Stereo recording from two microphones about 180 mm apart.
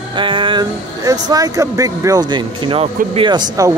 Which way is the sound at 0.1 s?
30° right (ahead or behind).